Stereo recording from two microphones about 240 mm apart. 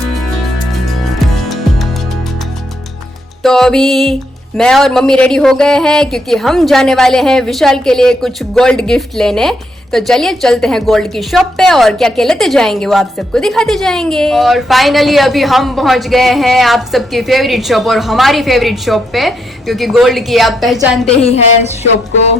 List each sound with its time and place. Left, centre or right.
1.5 s music: centre
3.4 s music: centre
4.5 s a man's voice: centre
21.2 s a woman's voice: left